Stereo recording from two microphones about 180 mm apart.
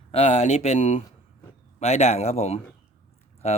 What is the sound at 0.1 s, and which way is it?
Speech, 35° left (ahead or behind).